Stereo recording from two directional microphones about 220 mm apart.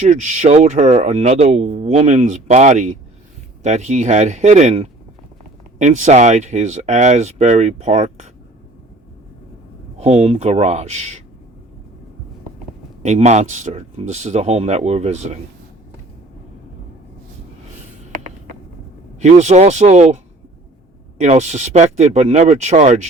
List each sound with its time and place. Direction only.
0.0 s speech: 30° right (ahead or behind)
10.0 s speech: 30° right (ahead or behind)
13.0 s speech: 30° right (ahead or behind)
19.2 s speech: 30° right (ahead or behind)
21.2 s speech: 30° right (ahead or behind)